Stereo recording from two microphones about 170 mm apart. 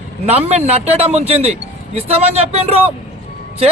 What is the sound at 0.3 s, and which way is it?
Speech, 35° right (ahead or behind).